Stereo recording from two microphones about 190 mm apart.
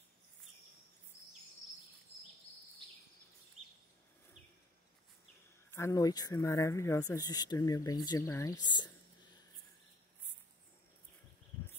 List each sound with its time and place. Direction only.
5.7 s speech: 15° left (ahead or behind)